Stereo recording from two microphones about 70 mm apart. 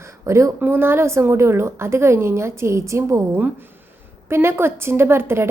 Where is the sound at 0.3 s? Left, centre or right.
Right.